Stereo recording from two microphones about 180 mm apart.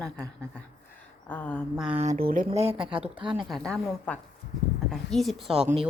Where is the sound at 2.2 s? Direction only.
50° right (ahead or behind).